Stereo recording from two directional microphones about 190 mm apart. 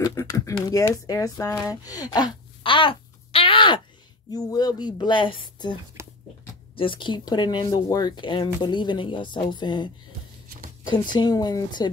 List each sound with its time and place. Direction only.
0.0 s speech: 15° left (ahead or behind)
6.0 s a sound: 15° right (ahead or behind)
6.7 s speech: 25° left (ahead or behind)
10.9 s speech: 25° left (ahead or behind)